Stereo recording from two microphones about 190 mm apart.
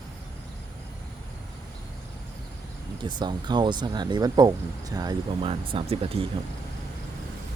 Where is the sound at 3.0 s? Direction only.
25° right (ahead or behind).